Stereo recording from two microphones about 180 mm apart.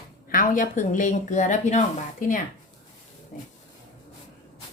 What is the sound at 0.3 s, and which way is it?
Speech, 50° left (ahead or behind).